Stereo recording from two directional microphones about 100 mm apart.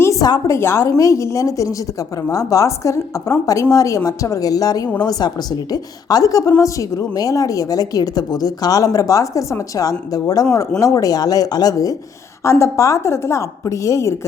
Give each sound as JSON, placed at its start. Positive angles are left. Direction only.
{"t": 0.0, "sound": "a sound", "side_deg": 30}
{"t": 0.3, "sound": "a woman's voice", "side_deg": 40}
{"t": 0.5, "sound": "a woman's voice", "side_deg": 30}